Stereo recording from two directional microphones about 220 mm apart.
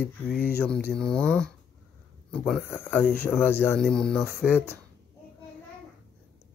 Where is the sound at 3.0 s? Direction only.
45° left (ahead or behind).